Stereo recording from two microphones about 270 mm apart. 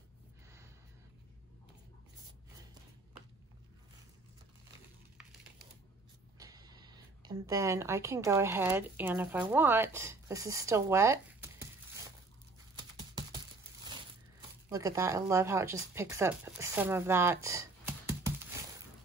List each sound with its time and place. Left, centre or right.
6.4 s speech: centre
12.7 s typing: centre
14.7 s speech: centre